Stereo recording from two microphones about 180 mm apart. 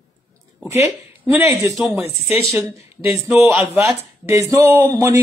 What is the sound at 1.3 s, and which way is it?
Speech, 15° right (ahead or behind).